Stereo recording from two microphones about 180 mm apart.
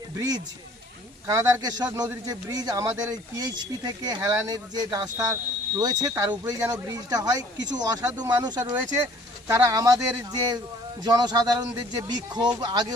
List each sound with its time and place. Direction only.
0.2 s a man's voice: 20° right (ahead or behind)